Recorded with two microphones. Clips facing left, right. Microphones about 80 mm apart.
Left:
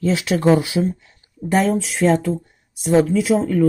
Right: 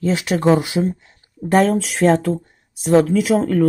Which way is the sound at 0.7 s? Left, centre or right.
Right.